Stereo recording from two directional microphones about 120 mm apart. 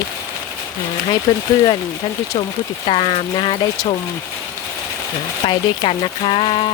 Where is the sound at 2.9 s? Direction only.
55° left (ahead or behind).